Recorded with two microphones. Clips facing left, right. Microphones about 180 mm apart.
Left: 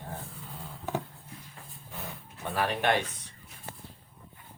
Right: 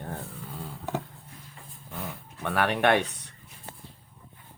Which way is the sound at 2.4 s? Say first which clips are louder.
Right 4 dB; 70° right (ahead or behind).